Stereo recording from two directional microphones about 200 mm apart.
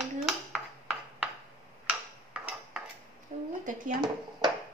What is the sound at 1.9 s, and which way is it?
Tick-tock, 5° right (ahead or behind).